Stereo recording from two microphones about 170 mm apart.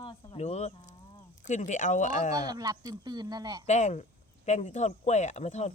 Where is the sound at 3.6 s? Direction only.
40° left (ahead or behind).